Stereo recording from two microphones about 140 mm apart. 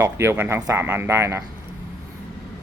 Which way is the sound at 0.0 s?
20° right (ahead or behind).